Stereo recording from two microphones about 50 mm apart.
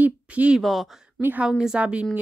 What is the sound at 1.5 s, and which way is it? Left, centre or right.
Speech, centre.